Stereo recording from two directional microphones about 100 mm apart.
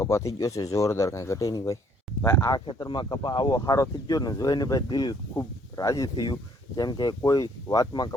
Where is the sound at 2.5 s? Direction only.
50° left (ahead or behind).